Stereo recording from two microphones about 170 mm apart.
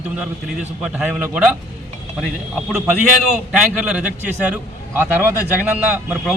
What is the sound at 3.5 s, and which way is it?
A man's voice, 5° right (ahead or behind).